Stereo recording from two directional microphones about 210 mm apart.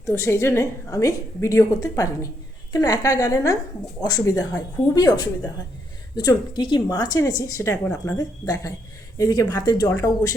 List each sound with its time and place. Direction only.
0.0 s a woman's voice: 15° left (ahead or behind)